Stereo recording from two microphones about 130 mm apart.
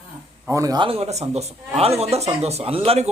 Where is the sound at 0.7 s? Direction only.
45° right (ahead or behind).